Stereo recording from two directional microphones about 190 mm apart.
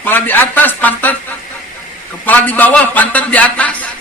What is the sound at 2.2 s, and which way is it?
A man's voice, 10° left (ahead or behind).